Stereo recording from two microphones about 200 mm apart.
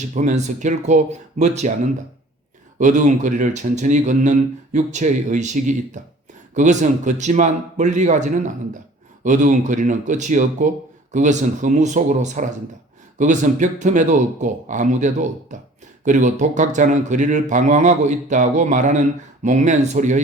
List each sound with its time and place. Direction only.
0.0 s a man's voice: 35° right (ahead or behind)
2.7 s a man's voice: 40° right (ahead or behind)